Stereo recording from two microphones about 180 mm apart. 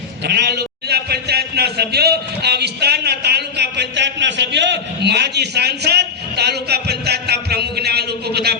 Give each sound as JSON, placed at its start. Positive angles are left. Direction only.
{"t": 0.3, "sound": "a man's voice", "side_deg": -65}